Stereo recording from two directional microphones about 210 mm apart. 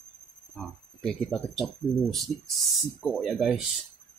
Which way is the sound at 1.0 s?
5° left (ahead or behind).